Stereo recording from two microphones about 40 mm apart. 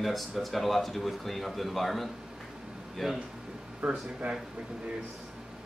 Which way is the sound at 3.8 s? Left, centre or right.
Right.